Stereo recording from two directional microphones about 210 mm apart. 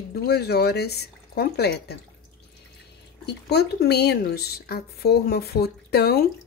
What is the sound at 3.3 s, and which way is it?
A woman's voice, 50° left (ahead or behind).